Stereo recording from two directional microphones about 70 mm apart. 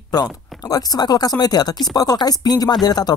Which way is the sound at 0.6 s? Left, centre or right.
Left.